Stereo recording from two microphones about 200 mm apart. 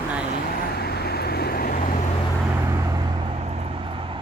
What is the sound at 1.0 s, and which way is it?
Vehicle, 50° left (ahead or behind).